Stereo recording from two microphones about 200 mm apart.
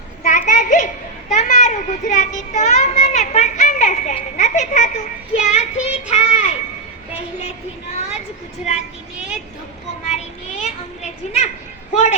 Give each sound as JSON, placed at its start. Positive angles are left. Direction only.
{"t": 0.2, "sound": "children playing", "side_deg": 40}
{"t": 1.3, "sound": "a child's voice", "side_deg": 35}
{"t": 5.8, "sound": "child singing", "side_deg": 35}
{"t": 7.2, "sound": "a child's voice", "side_deg": 30}
{"t": 8.7, "sound": "speech", "side_deg": -5}
{"t": 10.1, "sound": "a sound", "side_deg": 35}